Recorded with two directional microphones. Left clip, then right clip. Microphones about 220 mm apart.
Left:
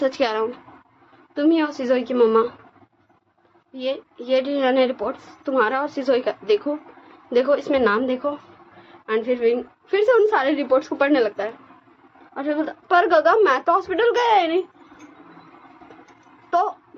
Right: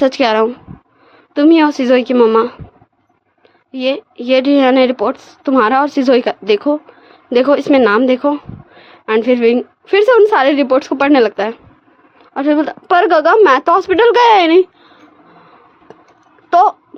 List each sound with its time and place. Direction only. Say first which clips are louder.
0.0 s a woman's voice: right 9 dB; 45° right (ahead or behind)
3.7 s a woman's voice: right 9 dB; 50° right (ahead or behind)
16.5 s a sound: right 11 dB; 50° right (ahead or behind)